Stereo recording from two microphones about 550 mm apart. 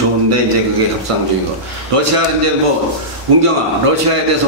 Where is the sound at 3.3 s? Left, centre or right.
Right.